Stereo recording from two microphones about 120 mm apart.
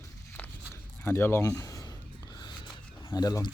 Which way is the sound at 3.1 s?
30° left (ahead or behind).